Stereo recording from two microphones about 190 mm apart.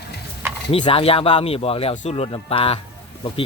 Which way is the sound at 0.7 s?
25° left (ahead or behind).